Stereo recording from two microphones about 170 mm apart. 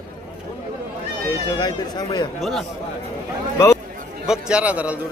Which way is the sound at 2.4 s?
Centre (ahead or behind).